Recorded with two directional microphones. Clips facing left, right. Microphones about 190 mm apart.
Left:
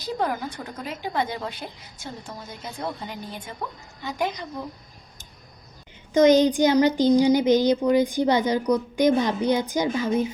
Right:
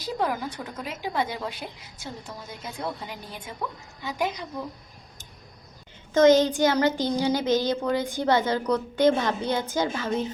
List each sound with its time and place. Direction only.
0.0 s a woman's voice: 5° right (ahead or behind)
4.0 s a woman's voice: 5° right (ahead or behind)
6.1 s a child's voice: 15° left (ahead or behind)